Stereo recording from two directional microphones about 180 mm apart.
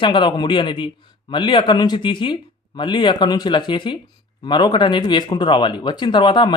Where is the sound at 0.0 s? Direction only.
25° left (ahead or behind).